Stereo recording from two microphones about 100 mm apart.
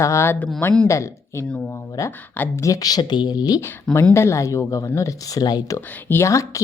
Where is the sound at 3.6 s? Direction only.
30° left (ahead or behind).